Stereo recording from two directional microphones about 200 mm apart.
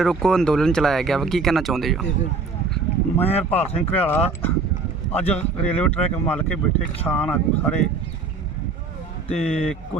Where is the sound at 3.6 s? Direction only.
30° left (ahead or behind).